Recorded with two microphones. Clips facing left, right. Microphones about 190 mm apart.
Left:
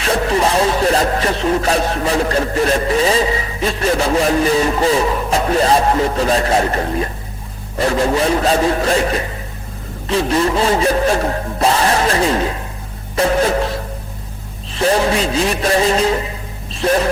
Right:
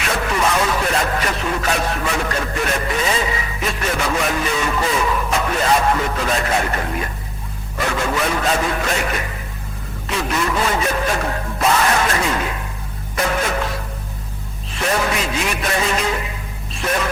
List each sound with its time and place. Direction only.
0.0 s speech: 30° left (ahead or behind)